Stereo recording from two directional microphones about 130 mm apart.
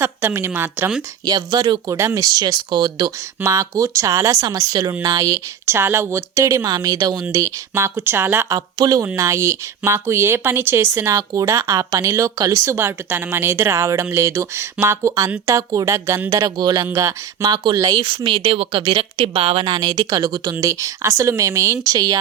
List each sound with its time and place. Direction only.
0.0 s a woman's voice: 20° right (ahead or behind)
1.2 s a woman's voice: 30° right (ahead or behind)